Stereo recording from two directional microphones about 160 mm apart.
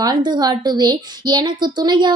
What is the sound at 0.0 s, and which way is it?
A woman's voice, 25° right (ahead or behind).